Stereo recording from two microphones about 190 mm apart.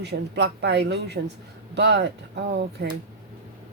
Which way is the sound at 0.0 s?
60° right (ahead or behind).